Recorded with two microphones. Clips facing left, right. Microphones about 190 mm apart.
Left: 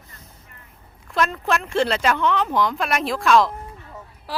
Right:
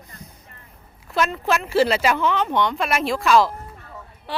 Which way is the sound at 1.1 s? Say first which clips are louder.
Right 1 dB; centre (ahead or behind).